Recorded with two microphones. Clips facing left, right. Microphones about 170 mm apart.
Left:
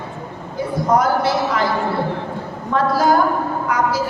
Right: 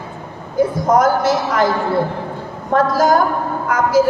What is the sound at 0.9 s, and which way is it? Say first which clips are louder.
Speech: right 2 dB; 45° right (ahead or behind).